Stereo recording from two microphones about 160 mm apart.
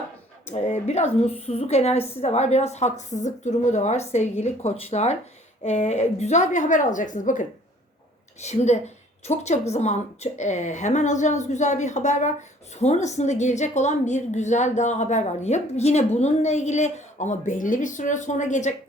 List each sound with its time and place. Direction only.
0.5 s a woman's voice: 45° left (ahead or behind)